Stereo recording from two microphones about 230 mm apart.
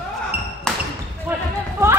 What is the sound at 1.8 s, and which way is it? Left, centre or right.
Chatter, centre.